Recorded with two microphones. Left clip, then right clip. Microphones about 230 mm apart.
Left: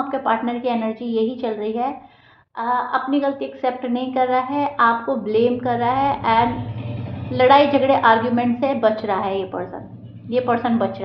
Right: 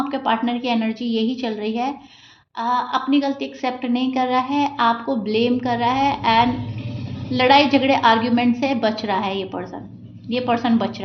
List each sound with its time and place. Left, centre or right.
0.1 s a woman's voice: right